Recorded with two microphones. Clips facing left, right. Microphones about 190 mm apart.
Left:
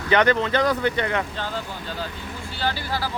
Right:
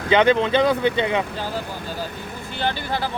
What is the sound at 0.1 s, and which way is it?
Speech, 20° right (ahead or behind).